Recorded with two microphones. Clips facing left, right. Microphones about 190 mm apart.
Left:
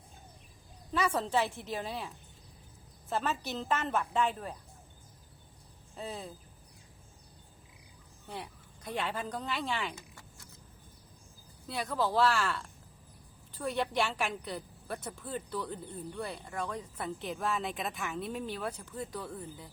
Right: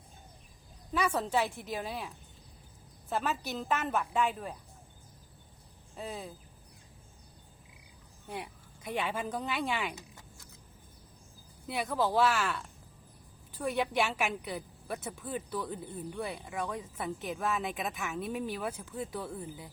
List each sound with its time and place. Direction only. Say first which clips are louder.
1.2 s a woman's voice: even; 5° right (ahead or behind)
6.0 s a woman's voice: even; 5° right (ahead or behind)
8.3 s a sound: right 2 dB; 15° right (ahead or behind)
9.0 s a woman's voice: right 2 dB; 10° right (ahead or behind)
11.6 s a woman's voice: right 1 dB; 15° right (ahead or behind)
12.1 s a woman's voice: left 1 dB; 5° right (ahead or behind)